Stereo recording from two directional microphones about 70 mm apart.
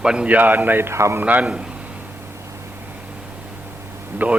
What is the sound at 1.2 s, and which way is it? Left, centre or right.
Speech, right.